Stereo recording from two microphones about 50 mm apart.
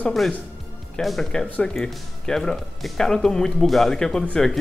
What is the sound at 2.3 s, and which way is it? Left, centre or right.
Speech, centre.